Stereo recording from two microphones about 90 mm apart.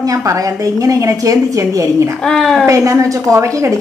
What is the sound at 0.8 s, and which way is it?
A woman's voice, 40° right (ahead or behind).